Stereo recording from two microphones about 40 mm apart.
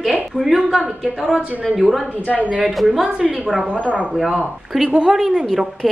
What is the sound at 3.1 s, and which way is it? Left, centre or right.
Speech, centre.